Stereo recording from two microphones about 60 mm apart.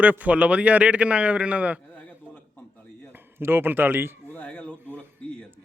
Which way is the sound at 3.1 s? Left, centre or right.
Right.